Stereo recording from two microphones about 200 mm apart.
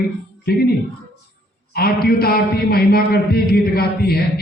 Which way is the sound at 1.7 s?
50° left (ahead or behind).